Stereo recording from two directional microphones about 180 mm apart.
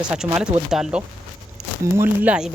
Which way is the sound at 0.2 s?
15° right (ahead or behind).